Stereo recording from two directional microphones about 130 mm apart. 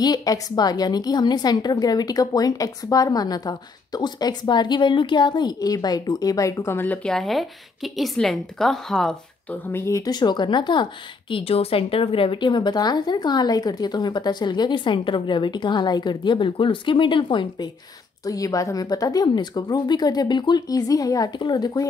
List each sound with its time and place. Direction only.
0.0 s speech: 30° left (ahead or behind)
7.1 s a woman's voice: centre (ahead or behind)
9.7 s speech: 20° left (ahead or behind); by 17.6 s 40° left (ahead or behind)
18.2 s a woman's voice: 25° left (ahead or behind)